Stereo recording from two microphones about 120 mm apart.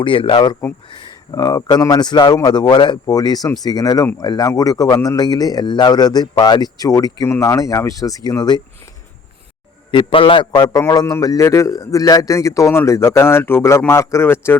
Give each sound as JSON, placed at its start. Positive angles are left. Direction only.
{"t": 0.0, "sound": "speech", "side_deg": 45}
{"t": 9.9, "sound": "a man's voice", "side_deg": 45}